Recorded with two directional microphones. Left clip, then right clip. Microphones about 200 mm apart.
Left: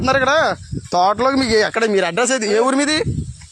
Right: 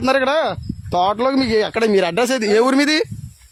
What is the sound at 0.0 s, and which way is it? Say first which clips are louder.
Speech: left 2 dB; 25° right (ahead or behind).